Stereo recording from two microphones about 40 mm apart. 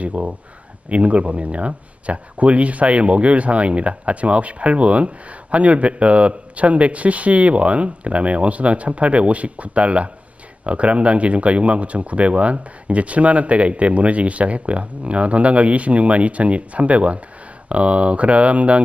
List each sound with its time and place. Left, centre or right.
0.0 s speech: right